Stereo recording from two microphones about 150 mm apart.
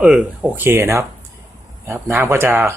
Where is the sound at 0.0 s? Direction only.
10° right (ahead or behind).